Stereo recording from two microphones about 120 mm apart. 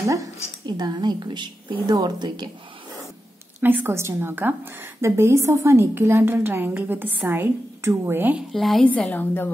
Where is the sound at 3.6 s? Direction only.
15° right (ahead or behind).